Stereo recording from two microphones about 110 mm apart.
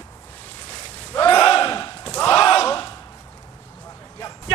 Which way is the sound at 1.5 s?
30° left (ahead or behind).